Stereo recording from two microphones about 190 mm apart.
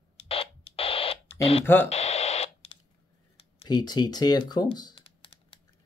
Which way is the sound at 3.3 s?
25° left (ahead or behind).